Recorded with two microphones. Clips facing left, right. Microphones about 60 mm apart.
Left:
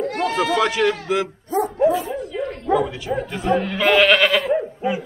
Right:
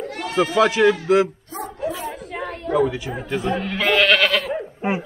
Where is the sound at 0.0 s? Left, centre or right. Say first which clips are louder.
Left 7 dB; left.